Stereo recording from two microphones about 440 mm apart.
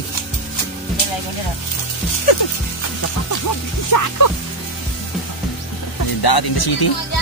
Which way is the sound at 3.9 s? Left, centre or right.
Left.